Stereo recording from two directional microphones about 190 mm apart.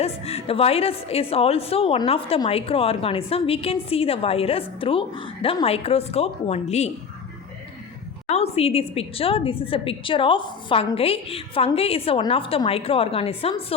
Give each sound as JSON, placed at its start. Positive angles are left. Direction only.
{"t": 0.0, "sound": "a woman's voice", "side_deg": 30}
{"t": 8.3, "sound": "a woman's voice", "side_deg": 30}